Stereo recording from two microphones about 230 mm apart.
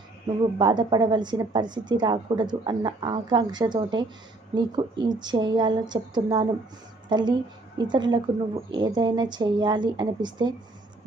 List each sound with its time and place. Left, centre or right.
0.6 s a woman's voice: centre